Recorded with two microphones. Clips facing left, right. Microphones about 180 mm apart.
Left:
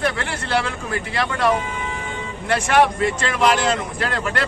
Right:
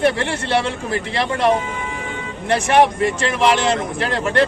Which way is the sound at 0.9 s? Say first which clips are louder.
Right 2 dB; 25° right (ahead or behind).